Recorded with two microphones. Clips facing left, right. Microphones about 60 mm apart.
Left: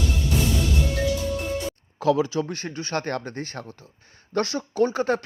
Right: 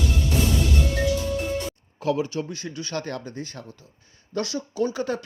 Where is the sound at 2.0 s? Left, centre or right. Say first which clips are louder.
Left 4 dB; left.